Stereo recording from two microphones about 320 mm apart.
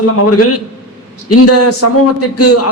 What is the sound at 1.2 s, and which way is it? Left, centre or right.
A man's voice, left.